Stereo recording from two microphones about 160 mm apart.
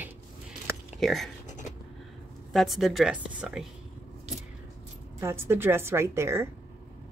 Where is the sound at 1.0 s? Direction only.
Centre (ahead or behind).